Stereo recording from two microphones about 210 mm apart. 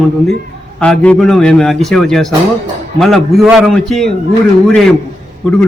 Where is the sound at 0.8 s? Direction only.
5° left (ahead or behind).